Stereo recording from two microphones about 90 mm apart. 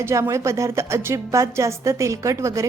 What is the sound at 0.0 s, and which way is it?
A woman's voice, 35° right (ahead or behind).